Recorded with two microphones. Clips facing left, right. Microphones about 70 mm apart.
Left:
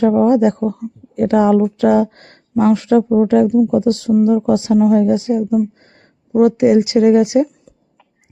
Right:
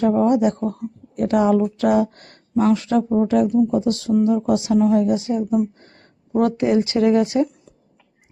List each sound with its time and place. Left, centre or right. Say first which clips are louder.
0.0 s a woman's voice: left 5 dB; left